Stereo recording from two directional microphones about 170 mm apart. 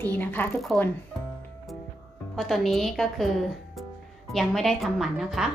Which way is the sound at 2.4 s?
Centre (ahead or behind).